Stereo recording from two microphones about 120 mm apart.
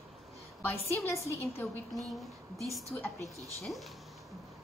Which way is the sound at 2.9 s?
20° left (ahead or behind).